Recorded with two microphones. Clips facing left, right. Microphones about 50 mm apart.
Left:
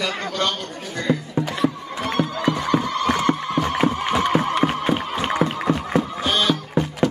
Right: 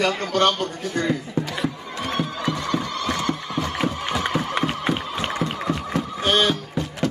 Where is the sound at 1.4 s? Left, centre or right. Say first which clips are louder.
Left 2 dB; centre.